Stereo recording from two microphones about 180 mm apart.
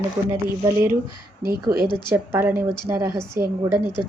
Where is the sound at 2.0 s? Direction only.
15° right (ahead or behind).